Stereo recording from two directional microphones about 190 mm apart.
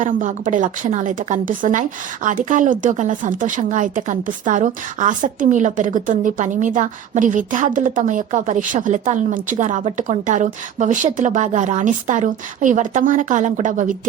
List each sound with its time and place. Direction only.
0.0 s a woman's voice: 45° right (ahead or behind)